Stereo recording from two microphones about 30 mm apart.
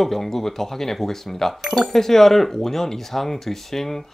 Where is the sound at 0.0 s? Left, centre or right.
Centre.